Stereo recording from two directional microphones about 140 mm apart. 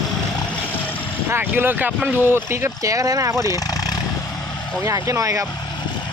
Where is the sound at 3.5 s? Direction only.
25° left (ahead or behind).